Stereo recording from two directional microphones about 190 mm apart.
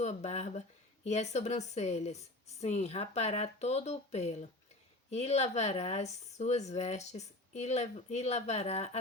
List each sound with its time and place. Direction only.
0.0 s speech: 35° left (ahead or behind)